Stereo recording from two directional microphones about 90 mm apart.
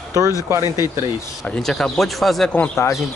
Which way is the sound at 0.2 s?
40° right (ahead or behind).